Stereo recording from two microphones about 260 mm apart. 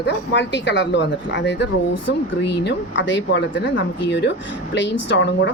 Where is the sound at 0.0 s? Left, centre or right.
Left.